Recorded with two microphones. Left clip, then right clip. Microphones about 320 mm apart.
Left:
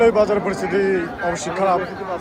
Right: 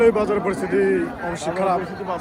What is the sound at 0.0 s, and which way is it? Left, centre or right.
A man's voice, centre.